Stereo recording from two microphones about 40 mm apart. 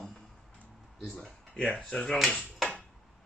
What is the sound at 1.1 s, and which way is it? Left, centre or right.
Speech, left.